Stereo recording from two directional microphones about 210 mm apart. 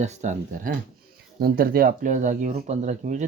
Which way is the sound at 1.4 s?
45° right (ahead or behind).